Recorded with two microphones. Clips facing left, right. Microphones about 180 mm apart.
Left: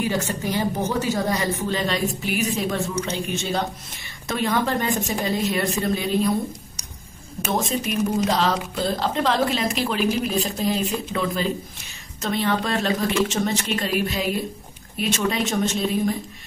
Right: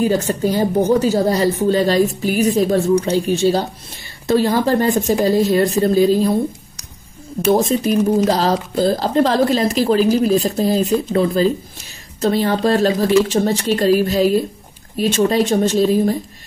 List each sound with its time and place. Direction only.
0.0 s a woman's voice: 35° right (ahead or behind)
7.5 s a woman's voice: 35° right (ahead or behind)